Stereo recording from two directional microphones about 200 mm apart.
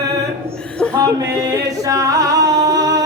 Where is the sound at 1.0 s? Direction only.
15° right (ahead or behind).